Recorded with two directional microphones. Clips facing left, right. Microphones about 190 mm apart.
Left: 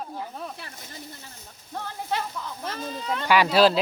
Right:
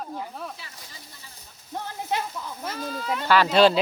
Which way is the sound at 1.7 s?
15° right (ahead or behind).